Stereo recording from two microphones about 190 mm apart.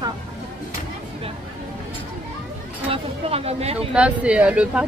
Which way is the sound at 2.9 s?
30° right (ahead or behind).